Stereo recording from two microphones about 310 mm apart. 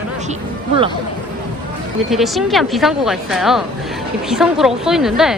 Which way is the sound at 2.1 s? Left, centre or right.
Centre.